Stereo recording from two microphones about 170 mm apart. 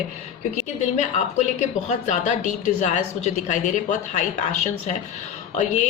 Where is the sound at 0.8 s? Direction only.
45° left (ahead or behind).